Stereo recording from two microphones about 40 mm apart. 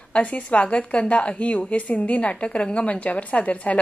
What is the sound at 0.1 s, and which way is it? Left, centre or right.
A woman's voice, left.